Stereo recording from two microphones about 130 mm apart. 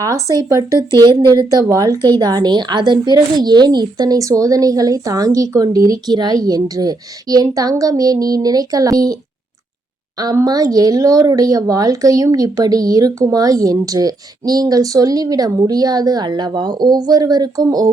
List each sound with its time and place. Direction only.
0.0 s a woman's voice: 25° right (ahead or behind)
10.2 s a woman's voice: 30° right (ahead or behind)